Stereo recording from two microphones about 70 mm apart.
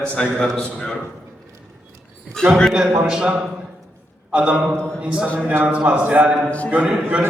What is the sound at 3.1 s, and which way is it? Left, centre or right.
A man's voice, centre.